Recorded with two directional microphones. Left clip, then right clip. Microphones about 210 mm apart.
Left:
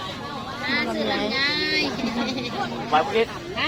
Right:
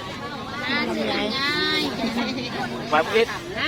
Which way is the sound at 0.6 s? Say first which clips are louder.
Even; centre (ahead or behind).